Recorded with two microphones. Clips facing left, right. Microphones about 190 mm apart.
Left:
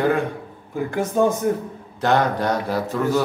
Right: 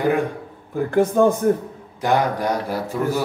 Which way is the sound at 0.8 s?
55° right (ahead or behind).